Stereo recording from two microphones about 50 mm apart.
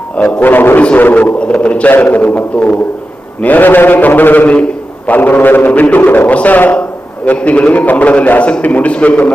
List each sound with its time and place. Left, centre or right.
0.2 s a man's voice: left
0.4 s mantra: left
1.4 s a man's voice: left
1.9 s mantra: left
7.3 s a man's voice: left
8.6 s mantra: left